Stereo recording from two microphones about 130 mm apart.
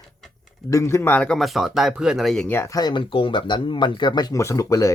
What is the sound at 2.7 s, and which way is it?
Speech, 35° left (ahead or behind).